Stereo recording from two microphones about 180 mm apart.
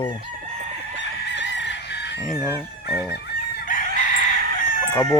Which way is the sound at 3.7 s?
45° left (ahead or behind).